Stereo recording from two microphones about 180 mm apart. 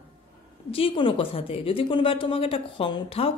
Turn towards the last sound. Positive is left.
turn(degrees=30)  # may be behind; listen again after turning